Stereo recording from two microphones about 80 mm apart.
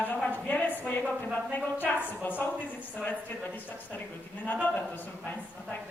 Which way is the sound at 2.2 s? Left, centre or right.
Left.